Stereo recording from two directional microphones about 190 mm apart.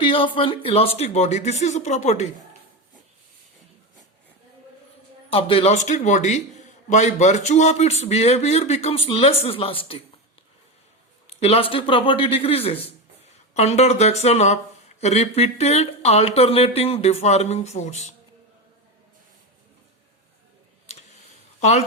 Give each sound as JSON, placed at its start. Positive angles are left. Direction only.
{"t": 0.0, "sound": "a man's voice", "side_deg": 25}
{"t": 5.3, "sound": "a man's voice", "side_deg": 30}
{"t": 11.3, "sound": "a man's voice", "side_deg": 30}
{"t": 21.6, "sound": "a woman's voice", "side_deg": 35}